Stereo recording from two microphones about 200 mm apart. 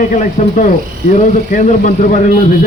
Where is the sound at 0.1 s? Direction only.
40° left (ahead or behind).